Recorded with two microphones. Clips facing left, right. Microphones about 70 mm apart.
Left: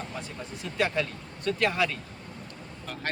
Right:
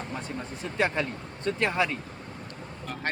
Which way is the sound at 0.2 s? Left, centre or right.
Right.